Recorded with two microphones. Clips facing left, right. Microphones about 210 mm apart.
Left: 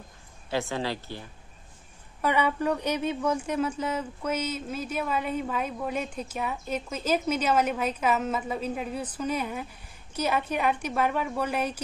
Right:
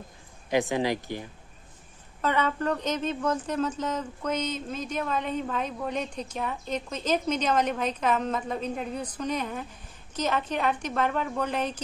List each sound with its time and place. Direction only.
0.5 s speech: 15° right (ahead or behind)
2.2 s speech: 10° left (ahead or behind)